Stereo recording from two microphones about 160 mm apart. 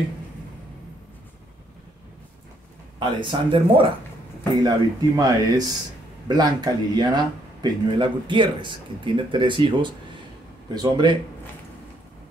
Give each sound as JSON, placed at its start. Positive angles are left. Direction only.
{"t": 3.0, "sound": "speech", "side_deg": -30}